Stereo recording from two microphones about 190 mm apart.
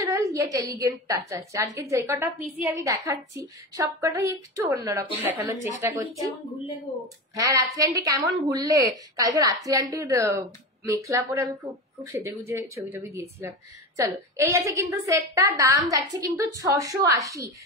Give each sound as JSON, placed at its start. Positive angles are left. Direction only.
{"t": 0.0, "sound": "a woman's voice", "side_deg": -15}
{"t": 7.3, "sound": "a woman's voice", "side_deg": -20}